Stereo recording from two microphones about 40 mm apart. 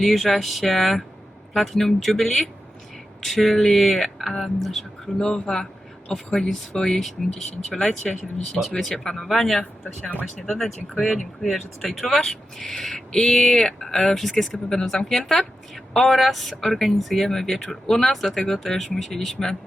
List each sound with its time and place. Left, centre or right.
0.0 s speech: centre
5.0 s speech: centre
8.6 s speech: centre
9.0 s speech: centre
10.0 s speech: left
10.4 s speech: centre